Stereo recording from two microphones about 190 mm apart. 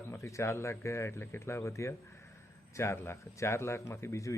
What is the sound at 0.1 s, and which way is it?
Speech, 15° left (ahead or behind).